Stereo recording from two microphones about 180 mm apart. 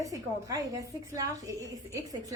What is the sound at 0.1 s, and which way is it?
A woman's voice, 20° right (ahead or behind).